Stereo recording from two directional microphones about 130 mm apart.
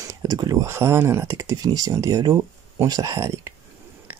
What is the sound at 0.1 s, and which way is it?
Speech, 30° right (ahead or behind).